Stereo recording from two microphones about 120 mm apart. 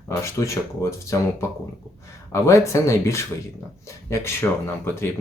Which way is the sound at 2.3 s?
25° left (ahead or behind).